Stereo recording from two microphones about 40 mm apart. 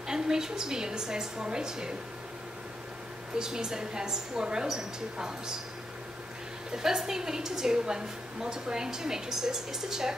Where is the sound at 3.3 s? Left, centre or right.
Centre.